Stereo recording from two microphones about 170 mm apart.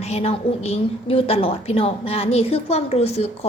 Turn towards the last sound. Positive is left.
turn(degrees=40)  # may be behind; listen again after turning